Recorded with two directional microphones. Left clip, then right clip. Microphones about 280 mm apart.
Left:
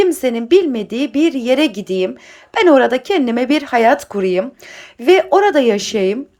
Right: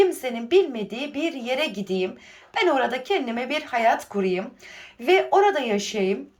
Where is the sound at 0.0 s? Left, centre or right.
Centre.